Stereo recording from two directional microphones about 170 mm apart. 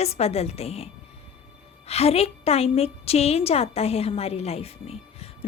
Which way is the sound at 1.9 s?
35° left (ahead or behind).